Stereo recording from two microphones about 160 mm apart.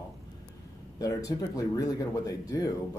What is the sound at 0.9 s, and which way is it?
Speech, 20° left (ahead or behind).